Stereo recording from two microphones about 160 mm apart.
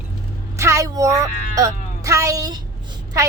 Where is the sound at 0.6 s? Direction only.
20° right (ahead or behind).